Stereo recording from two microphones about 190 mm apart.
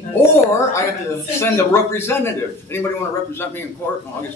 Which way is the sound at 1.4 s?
10° left (ahead or behind).